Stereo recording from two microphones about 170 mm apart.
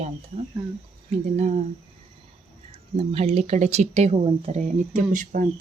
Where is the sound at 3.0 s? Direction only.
35° right (ahead or behind); by 5.6 s 55° right (ahead or behind).